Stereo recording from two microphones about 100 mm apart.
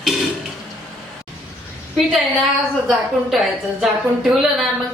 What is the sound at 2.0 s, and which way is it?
A woman's voice, centre (ahead or behind).